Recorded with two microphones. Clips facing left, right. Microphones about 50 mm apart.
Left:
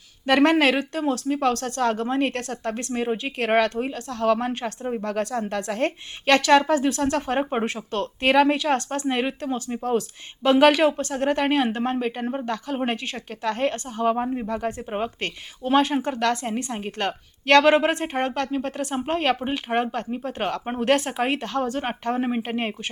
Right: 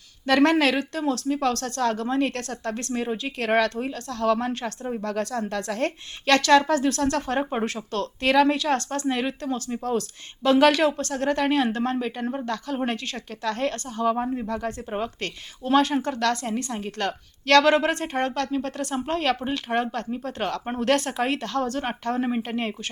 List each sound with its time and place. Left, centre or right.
0.3 s speech: left